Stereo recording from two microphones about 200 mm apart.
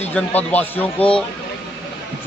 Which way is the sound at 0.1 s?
10° left (ahead or behind).